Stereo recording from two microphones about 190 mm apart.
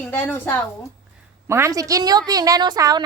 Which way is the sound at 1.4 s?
15° right (ahead or behind).